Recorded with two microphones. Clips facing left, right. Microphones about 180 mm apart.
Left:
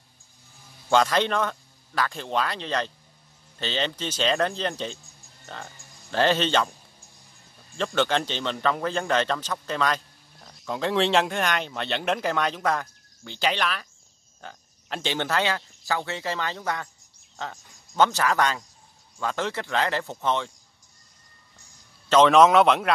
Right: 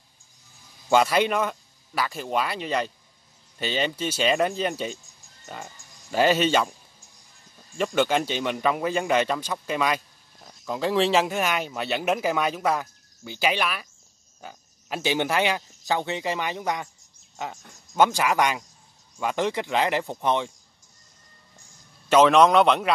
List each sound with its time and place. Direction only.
0.8 s a man's voice: 10° right (ahead or behind)
7.7 s speech: 10° right (ahead or behind)
17.9 s speech: 10° right (ahead or behind)
22.1 s a man's voice: centre (ahead or behind)